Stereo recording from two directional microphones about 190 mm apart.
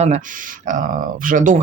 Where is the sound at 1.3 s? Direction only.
45° right (ahead or behind).